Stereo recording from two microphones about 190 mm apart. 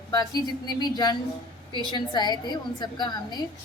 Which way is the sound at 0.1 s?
20° left (ahead or behind).